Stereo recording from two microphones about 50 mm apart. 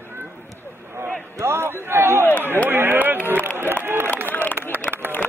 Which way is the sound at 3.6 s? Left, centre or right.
Right.